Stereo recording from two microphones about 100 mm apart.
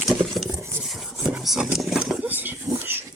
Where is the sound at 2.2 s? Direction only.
15° right (ahead or behind).